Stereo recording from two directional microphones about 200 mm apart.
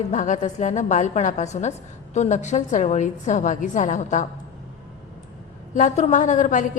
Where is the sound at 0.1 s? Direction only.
40° left (ahead or behind).